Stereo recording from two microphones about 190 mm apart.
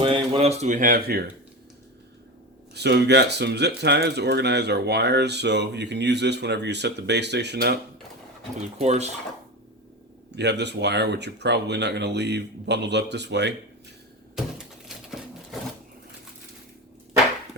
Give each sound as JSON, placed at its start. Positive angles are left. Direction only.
{"t": 0.0, "sound": "speech", "side_deg": -30}
{"t": 2.7, "sound": "speech", "side_deg": -60}
{"t": 8.8, "sound": "speech", "side_deg": -35}
{"t": 10.3, "sound": "speech", "side_deg": -65}